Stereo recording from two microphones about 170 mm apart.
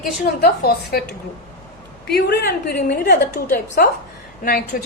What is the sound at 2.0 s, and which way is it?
A woman's voice, 70° left (ahead or behind).